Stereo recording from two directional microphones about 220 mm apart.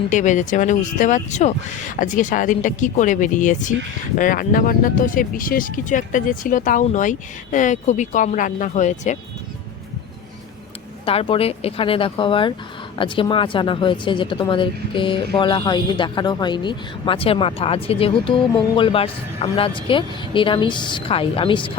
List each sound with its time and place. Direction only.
0.1 s speech: 35° left (ahead or behind)
11.0 s speech: 25° left (ahead or behind)